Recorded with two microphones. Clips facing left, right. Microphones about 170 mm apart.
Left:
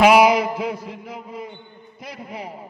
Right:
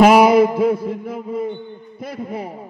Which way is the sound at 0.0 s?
50° right (ahead or behind).